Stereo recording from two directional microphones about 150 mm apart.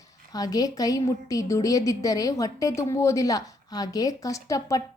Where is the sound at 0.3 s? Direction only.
25° left (ahead or behind).